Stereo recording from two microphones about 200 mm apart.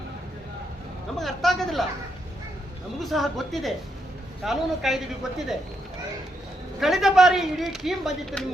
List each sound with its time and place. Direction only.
1.2 s a woman's voice: centre (ahead or behind)
3.0 s a woman's voice: centre (ahead or behind)
6.7 s a woman's voice: centre (ahead or behind)